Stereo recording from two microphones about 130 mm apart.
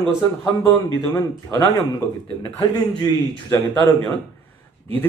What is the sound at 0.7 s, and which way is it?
Speech, 15° left (ahead or behind).